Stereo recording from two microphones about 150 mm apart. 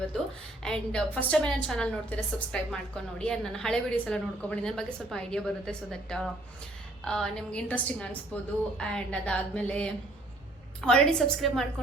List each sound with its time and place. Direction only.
0.6 s a woman's voice: 5° left (ahead or behind)